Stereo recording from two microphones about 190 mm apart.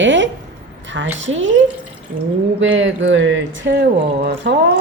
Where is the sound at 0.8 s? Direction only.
75° right (ahead or behind).